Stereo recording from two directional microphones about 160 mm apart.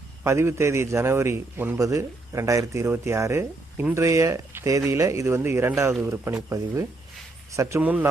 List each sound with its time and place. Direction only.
0.3 s a man's voice: 15° right (ahead or behind)